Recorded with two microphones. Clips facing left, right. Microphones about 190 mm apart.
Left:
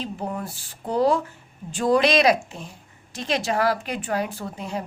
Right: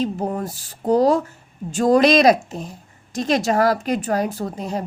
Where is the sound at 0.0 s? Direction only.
40° right (ahead or behind).